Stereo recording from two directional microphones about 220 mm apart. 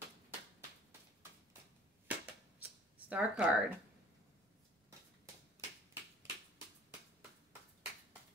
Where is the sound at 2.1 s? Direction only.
5° right (ahead or behind).